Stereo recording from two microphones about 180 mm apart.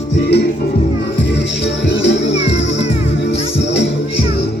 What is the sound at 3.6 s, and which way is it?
Music, 75° left (ahead or behind).